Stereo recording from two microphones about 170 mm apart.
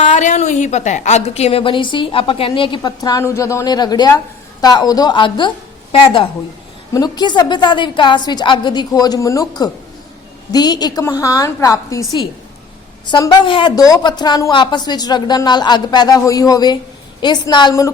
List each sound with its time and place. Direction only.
0.0 s a woman's voice: 45° left (ahead or behind); by 5.5 s 25° left (ahead or behind)
6.9 s a woman's voice: 25° left (ahead or behind)
13.1 s a woman's voice: 20° left (ahead or behind)